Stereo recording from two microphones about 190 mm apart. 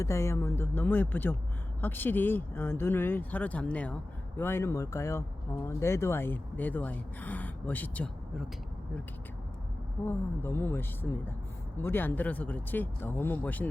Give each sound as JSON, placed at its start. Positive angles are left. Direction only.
{"t": 0.0, "sound": "speech", "side_deg": 15}
{"t": 10.1, "sound": "speech", "side_deg": 10}